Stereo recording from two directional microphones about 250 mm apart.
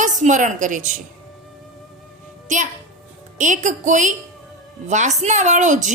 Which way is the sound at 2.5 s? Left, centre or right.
Right.